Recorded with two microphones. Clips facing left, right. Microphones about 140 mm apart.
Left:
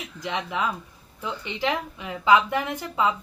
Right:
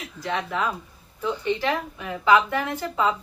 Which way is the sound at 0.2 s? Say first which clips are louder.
Right 1 dB; 15° left (ahead or behind).